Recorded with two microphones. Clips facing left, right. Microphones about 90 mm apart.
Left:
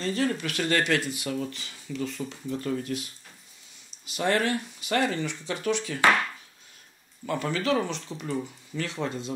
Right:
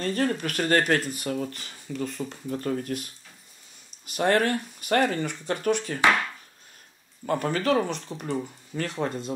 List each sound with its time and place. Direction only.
0.0 s speech: 45° right (ahead or behind)
7.2 s speech: 45° right (ahead or behind)